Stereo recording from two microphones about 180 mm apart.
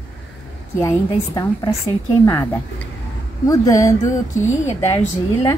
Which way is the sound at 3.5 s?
20° left (ahead or behind).